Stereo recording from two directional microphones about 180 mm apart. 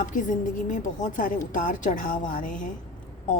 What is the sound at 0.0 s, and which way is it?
A woman's voice, 45° left (ahead or behind).